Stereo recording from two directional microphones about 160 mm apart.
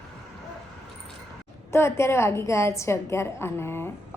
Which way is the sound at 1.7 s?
15° left (ahead or behind).